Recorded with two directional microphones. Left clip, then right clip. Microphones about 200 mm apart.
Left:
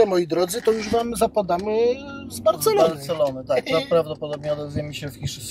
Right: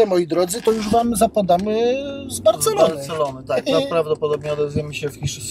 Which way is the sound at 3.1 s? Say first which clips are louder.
Even; 15° left (ahead or behind).